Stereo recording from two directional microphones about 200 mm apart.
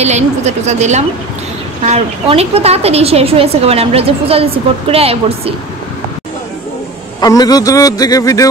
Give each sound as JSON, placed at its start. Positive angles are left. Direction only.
{"t": 0.0, "sound": "a woman's voice", "side_deg": -35}
{"t": 7.2, "sound": "a man's voice", "side_deg": 20}